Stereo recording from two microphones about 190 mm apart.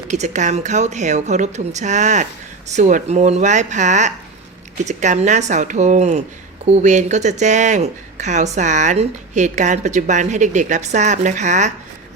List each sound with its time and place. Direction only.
0.1 s speech: 40° right (ahead or behind)